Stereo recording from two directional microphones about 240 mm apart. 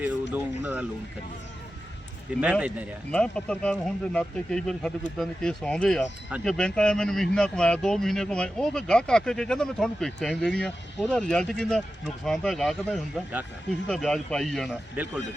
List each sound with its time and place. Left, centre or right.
0.6 s speech: centre
2.4 s speech: centre